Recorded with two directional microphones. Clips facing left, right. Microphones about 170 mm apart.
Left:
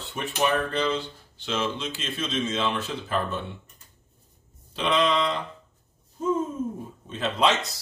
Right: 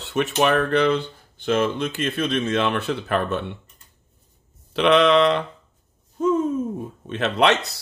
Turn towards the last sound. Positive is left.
turn(degrees=-65)  # may be behind; listen again after turning